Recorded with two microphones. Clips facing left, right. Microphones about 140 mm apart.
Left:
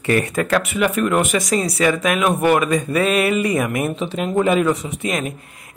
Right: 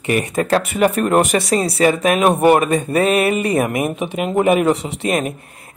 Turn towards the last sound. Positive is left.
turn(degrees=-30)  # may be behind; listen again after turning